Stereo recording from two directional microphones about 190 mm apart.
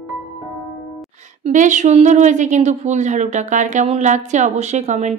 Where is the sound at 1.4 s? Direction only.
40° right (ahead or behind).